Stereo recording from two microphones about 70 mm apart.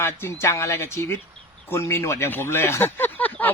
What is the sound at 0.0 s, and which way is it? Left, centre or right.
A man's voice, left.